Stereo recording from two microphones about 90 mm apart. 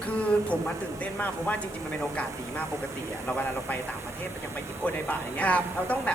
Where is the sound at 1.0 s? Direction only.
15° left (ahead or behind).